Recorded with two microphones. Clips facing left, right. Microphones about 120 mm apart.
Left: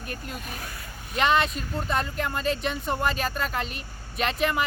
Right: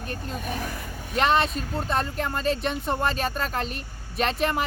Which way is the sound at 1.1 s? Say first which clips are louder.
Right 1 dB; 35° right (ahead or behind).